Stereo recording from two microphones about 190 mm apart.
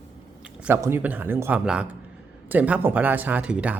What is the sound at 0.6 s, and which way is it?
A man's voice, 10° right (ahead or behind).